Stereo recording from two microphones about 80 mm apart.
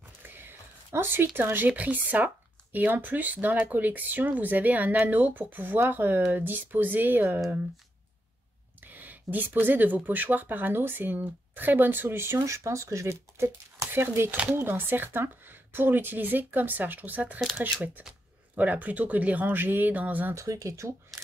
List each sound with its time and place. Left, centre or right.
0.3 s a sound: right
1.7 s speech: centre
8.8 s speech: right
18.6 s speech: right
20.3 s speech: right